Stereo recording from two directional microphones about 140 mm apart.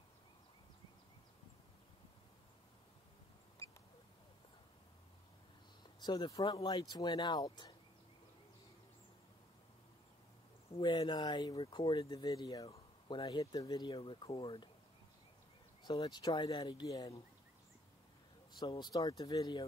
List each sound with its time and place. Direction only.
5.9 s speech: 30° left (ahead or behind)
10.7 s speech: 35° left (ahead or behind)
15.8 s speech: 30° left (ahead or behind)
18.6 s speech: 30° left (ahead or behind)